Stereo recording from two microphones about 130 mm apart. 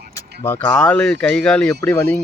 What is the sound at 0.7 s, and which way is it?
Speech, 5° left (ahead or behind).